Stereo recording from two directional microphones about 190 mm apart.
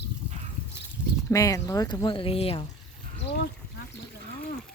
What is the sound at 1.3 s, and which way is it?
Speech, 15° left (ahead or behind).